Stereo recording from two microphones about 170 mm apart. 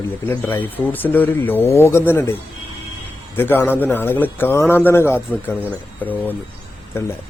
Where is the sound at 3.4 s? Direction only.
10° left (ahead or behind).